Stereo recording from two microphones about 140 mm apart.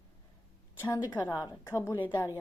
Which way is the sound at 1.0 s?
25° left (ahead or behind).